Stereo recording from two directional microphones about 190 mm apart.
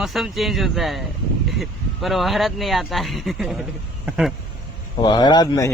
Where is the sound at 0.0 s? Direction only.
Centre (ahead or behind).